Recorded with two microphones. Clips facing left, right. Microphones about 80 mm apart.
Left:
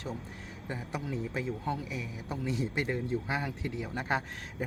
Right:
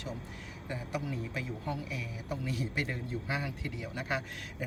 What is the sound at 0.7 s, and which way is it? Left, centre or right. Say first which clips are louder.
A man's voice: even; left.